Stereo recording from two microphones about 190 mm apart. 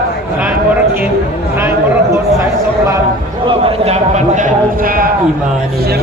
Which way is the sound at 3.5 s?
30° right (ahead or behind).